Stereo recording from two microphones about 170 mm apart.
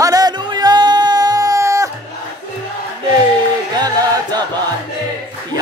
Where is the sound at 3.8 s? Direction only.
25° right (ahead or behind).